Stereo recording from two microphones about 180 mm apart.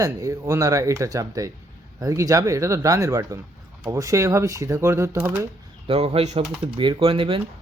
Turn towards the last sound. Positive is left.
turn(degrees=-30)  # may be behind; listen again after turning